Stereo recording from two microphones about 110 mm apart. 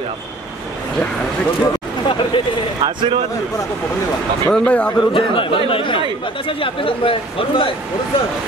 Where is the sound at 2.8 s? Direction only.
50° right (ahead or behind).